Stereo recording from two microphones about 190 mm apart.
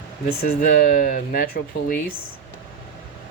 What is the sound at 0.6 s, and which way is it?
Speech, 50° left (ahead or behind).